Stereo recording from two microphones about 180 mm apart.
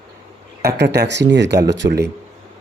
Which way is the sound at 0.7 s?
70° right (ahead or behind).